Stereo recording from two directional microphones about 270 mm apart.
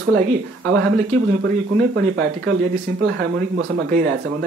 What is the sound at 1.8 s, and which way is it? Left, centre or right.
Speech, right.